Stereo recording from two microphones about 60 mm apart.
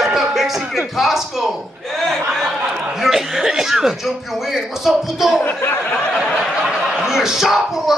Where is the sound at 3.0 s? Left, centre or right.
Centre.